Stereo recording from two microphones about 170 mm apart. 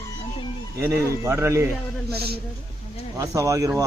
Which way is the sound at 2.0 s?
70° right (ahead or behind).